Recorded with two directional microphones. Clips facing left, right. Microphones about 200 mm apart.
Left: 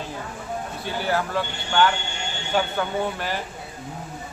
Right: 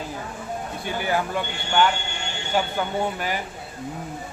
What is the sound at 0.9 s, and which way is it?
Speech, 15° right (ahead or behind).